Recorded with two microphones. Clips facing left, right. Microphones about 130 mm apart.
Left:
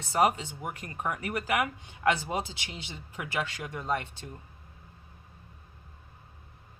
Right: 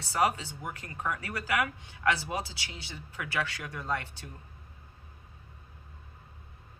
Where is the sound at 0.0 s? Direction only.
20° left (ahead or behind).